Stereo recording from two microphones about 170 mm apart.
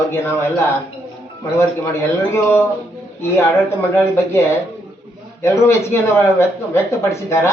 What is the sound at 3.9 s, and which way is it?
Speech, 15° left (ahead or behind).